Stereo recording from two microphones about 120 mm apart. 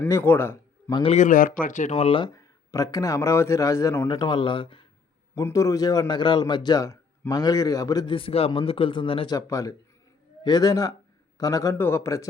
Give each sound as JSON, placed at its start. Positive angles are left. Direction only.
{"t": 0.0, "sound": "a man's voice", "side_deg": 15}
{"t": 1.0, "sound": "a man's voice", "side_deg": 70}
{"t": 1.6, "sound": "speech", "side_deg": 90}
{"t": 2.0, "sound": "speech", "side_deg": 45}
{"t": 2.3, "sound": "a man's voice", "side_deg": 30}
{"t": 4.1, "sound": "speech", "side_deg": 40}
{"t": 5.3, "sound": "a man's voice", "side_deg": 25}
{"t": 8.0, "sound": "speech", "side_deg": 50}
{"t": 9.3, "sound": "a man's voice", "side_deg": 30}